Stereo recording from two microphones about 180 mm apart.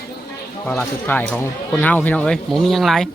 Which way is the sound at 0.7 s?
10° left (ahead or behind).